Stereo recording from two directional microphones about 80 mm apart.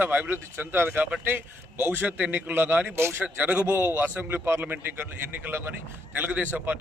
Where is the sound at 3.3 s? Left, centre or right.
Centre.